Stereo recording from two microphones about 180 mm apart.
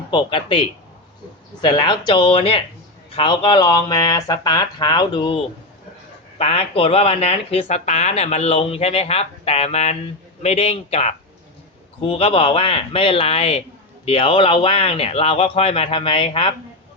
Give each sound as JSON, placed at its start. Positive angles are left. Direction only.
{"t": 0.1, "sound": "speech", "side_deg": 25}
{"t": 1.6, "sound": "speech", "side_deg": 25}
{"t": 6.4, "sound": "speech", "side_deg": 35}